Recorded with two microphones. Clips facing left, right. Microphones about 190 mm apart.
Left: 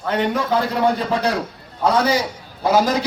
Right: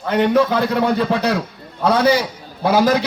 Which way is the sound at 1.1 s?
65° right (ahead or behind).